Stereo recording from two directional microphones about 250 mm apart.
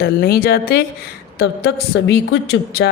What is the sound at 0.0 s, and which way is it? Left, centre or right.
A woman's voice, left.